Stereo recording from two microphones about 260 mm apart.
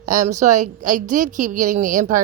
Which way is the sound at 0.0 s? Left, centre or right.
Right.